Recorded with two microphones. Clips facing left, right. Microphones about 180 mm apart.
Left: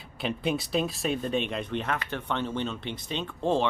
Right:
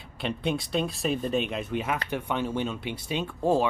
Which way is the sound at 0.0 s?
Centre (ahead or behind).